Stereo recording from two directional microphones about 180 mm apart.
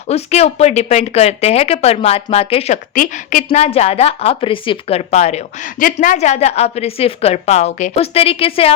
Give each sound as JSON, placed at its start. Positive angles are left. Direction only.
{"t": 0.1, "sound": "a woman's voice", "side_deg": 35}
{"t": 2.9, "sound": "a woman's voice", "side_deg": 45}